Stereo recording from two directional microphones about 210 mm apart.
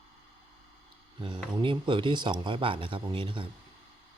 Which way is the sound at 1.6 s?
20° right (ahead or behind).